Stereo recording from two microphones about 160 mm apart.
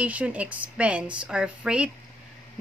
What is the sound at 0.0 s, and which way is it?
Speech, 10° right (ahead or behind).